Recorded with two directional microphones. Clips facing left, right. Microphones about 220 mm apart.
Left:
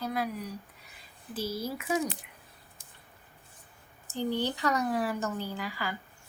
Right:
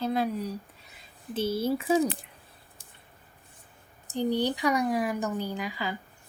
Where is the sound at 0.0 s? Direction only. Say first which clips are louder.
Right 5 dB; 25° right (ahead or behind).